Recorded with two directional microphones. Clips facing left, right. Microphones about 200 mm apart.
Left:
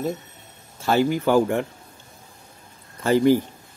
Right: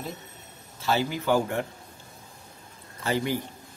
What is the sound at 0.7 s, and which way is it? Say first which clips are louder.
Speech: left 6 dB; 50° left (ahead or behind).